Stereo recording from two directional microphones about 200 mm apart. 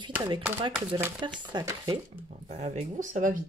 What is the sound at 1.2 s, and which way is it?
Speech, 20° right (ahead or behind).